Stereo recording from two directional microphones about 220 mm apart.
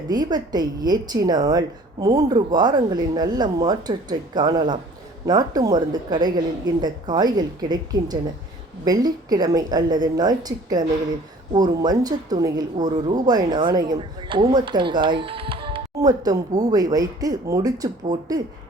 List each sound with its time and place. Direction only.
0.1 s a woman's voice: 20° right (ahead or behind)